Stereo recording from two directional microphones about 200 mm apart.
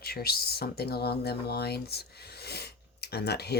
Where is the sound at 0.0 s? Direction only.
50° left (ahead or behind).